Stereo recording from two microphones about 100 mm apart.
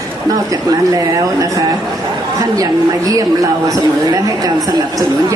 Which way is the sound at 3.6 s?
35° right (ahead or behind).